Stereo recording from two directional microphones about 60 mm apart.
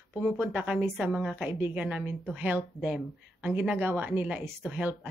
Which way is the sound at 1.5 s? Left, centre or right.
Right.